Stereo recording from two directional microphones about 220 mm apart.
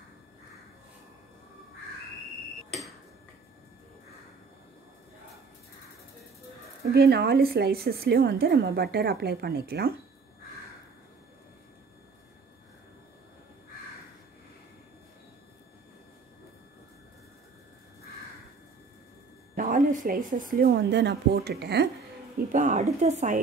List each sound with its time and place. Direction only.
6.8 s speech: 45° right (ahead or behind)
19.5 s a woman's voice: 40° right (ahead or behind)
22.5 s a woman's voice: 35° right (ahead or behind)